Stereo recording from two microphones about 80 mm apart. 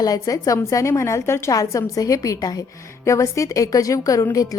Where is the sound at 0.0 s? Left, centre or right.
Left.